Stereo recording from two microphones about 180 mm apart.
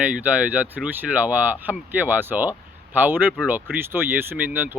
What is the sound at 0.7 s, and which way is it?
Speech, 10° right (ahead or behind).